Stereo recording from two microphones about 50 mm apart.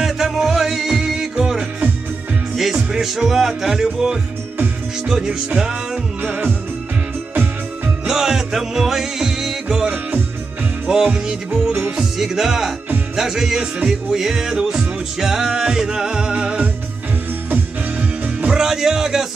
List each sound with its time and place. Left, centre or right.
0.0 s music: centre
2.5 s speech: centre
5.0 s music: centre
8.1 s music: centre
18.2 s music: right
18.6 s music: centre